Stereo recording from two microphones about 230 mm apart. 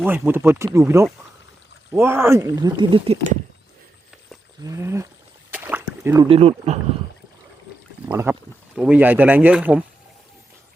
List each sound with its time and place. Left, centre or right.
0.0 s speech: centre
4.6 s speech: centre
5.5 s a sound: centre
6.2 s speech: right
8.0 s speech: centre